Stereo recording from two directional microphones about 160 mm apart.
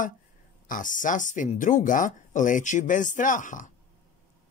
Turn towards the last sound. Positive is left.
turn(degrees=55)  # may be behind; listen again after turning